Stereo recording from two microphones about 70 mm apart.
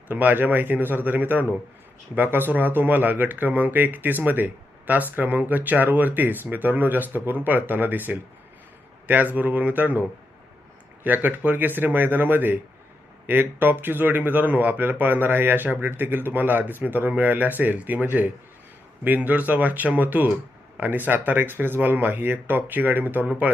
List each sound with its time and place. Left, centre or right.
0.1 s speech: right